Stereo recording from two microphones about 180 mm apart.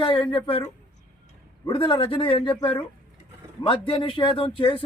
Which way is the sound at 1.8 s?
30° left (ahead or behind).